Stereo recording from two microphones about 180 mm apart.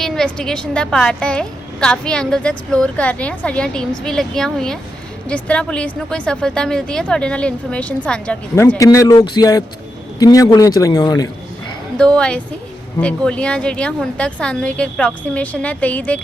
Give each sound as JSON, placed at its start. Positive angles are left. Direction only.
{"t": 0.0, "sound": "a woman's voice", "side_deg": 0}
{"t": 11.9, "sound": "a woman's voice", "side_deg": 5}